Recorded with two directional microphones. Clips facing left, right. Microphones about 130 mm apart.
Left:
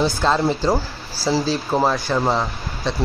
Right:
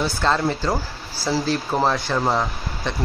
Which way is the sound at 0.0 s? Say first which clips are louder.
Left 3 dB; 15° left (ahead or behind).